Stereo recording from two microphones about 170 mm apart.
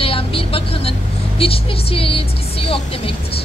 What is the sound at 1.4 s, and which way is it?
A woman's voice, 35° left (ahead or behind).